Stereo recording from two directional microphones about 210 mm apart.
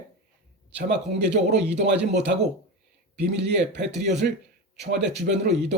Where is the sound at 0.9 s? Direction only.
55° right (ahead or behind).